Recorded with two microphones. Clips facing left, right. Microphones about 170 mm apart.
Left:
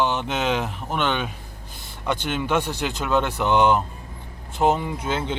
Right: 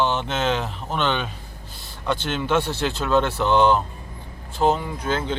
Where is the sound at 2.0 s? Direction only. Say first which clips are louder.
Right 1 dB; 15° left (ahead or behind).